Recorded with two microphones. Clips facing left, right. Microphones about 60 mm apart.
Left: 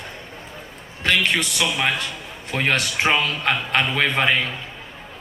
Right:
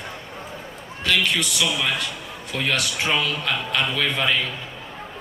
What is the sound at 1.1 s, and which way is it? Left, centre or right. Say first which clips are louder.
A man's voice: left 2 dB; left.